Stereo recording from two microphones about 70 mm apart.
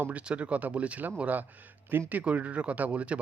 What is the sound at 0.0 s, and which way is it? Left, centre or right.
Speech, centre.